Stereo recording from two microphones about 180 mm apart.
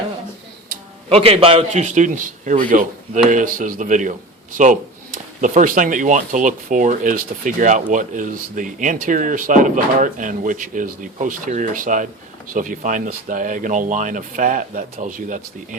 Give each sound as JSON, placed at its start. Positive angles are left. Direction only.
{"t": 1.1, "sound": "speech", "side_deg": -30}